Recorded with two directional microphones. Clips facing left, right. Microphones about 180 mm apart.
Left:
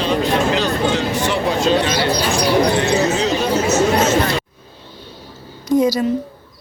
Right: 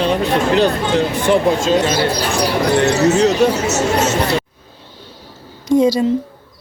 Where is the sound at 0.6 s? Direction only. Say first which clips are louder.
Right 3 dB; 55° right (ahead or behind).